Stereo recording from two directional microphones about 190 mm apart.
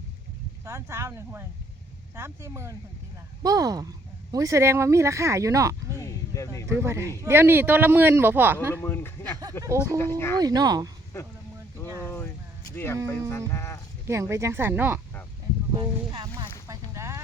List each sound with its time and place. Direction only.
0.6 s speech: 15° right (ahead or behind)
6.0 s a sound: 15° left (ahead or behind)
6.7 s speech: 15° right (ahead or behind)
8.7 s speech: 10° left (ahead or behind)
9.6 s speech: 15° right (ahead or behind)
10.0 s speech: 15° left (ahead or behind)
10.4 s speech: 20° right (ahead or behind)
11.1 s speech: 15° left (ahead or behind)
12.0 s a sound: 10° left (ahead or behind)
12.7 s speech: 10° left (ahead or behind)
14.1 s speech: 15° right (ahead or behind)
15.7 s speech: 20° right (ahead or behind)
16.6 s a sound: 15° right (ahead or behind)